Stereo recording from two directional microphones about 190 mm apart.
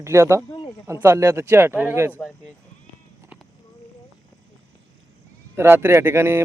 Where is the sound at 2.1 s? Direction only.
5° left (ahead or behind).